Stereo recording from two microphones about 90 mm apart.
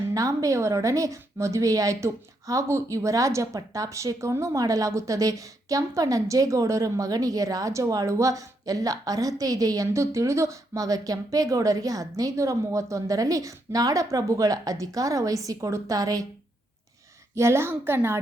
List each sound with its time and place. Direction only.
0.1 s speech: 40° right (ahead or behind)
17.3 s a woman's voice: 30° right (ahead or behind)